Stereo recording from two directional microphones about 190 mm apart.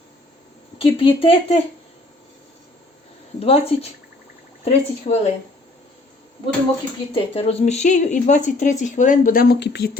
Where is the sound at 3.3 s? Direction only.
30° left (ahead or behind).